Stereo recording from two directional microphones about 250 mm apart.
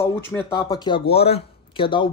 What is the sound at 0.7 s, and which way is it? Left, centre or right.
Speech, centre.